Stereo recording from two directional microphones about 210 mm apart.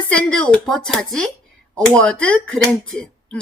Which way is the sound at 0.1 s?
5° left (ahead or behind).